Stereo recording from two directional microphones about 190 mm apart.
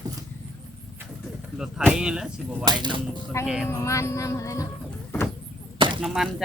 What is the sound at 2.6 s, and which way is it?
Speech, 25° right (ahead or behind).